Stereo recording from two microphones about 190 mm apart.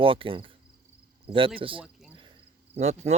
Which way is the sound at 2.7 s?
35° right (ahead or behind).